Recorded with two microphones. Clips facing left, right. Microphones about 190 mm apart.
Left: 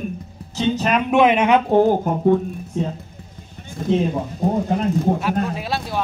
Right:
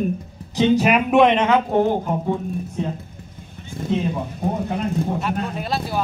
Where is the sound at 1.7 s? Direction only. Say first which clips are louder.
Left 6 dB; 30° left (ahead or behind).